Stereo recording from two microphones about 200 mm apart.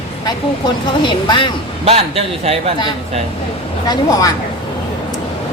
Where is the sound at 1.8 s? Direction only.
30° right (ahead or behind).